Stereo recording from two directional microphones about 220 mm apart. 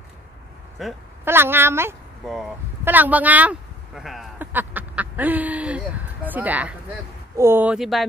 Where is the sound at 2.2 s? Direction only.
Centre (ahead or behind).